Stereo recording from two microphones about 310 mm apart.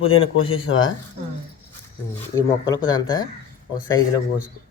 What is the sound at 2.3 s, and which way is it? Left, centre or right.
Speech, centre.